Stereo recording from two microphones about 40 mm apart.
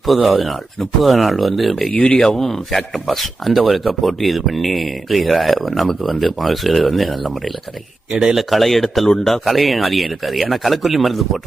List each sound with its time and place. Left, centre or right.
0.0 s speech: centre
1.9 s speech: left
2.2 s speech: centre